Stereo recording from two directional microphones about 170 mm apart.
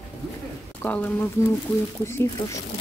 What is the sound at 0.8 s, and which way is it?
Speech, 10° left (ahead or behind).